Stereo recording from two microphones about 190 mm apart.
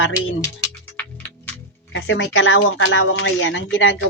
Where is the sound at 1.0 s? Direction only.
10° left (ahead or behind).